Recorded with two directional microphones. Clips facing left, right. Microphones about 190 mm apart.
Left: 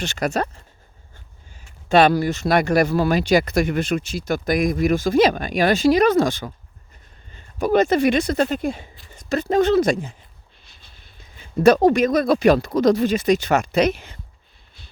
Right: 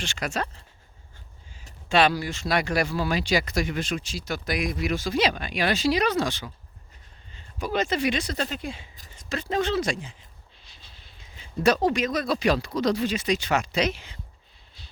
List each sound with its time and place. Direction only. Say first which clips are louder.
0.0 s speech: left 7 dB; 40° left (ahead or behind)
1.9 s speech: left 7 dB; 50° left (ahead or behind)
10.6 s a sound: left 1 dB; 55° left (ahead or behind)
11.6 s speech: left 8 dB; 50° left (ahead or behind)